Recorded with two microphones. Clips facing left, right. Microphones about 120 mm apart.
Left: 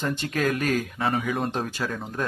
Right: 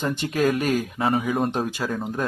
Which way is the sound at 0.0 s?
15° right (ahead or behind).